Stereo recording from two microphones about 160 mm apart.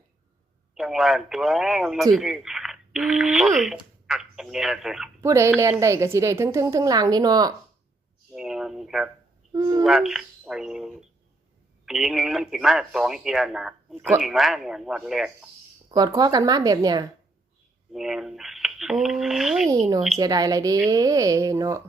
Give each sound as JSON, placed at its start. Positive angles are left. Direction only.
{"t": 0.8, "sound": "speech", "side_deg": 0}
{"t": 5.2, "sound": "a woman's voice", "side_deg": -20}
{"t": 8.3, "sound": "a sound", "side_deg": 0}
{"t": 9.5, "sound": "a woman's voice", "side_deg": -25}
{"t": 9.8, "sound": "speech", "side_deg": 0}
{"t": 15.9, "sound": "a woman's voice", "side_deg": -25}
{"t": 17.9, "sound": "speech", "side_deg": 0}
{"t": 19.7, "sound": "a woman's voice", "side_deg": -20}